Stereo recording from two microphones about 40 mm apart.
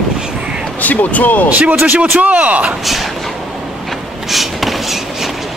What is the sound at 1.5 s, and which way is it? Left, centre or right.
Speech, right.